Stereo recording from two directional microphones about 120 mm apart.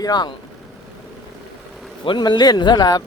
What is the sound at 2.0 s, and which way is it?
Speech, 40° left (ahead or behind).